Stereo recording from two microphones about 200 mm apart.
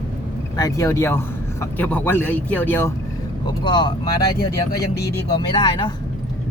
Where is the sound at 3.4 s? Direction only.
25° left (ahead or behind).